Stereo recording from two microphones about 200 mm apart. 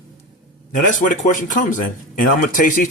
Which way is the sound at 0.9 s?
40° left (ahead or behind).